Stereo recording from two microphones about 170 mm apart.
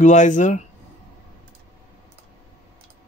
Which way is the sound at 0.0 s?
45° left (ahead or behind).